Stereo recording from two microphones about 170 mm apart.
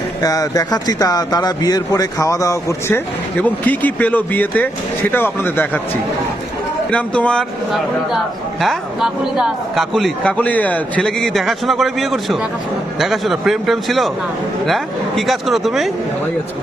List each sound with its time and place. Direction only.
0.2 s a man's voice: 20° left (ahead or behind)
6.9 s a man's voice: 5° left (ahead or behind)